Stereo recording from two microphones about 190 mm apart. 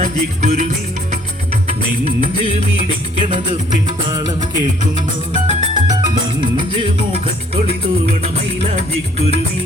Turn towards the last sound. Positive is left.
turn(degrees=-30)  # may be behind; listen again after turning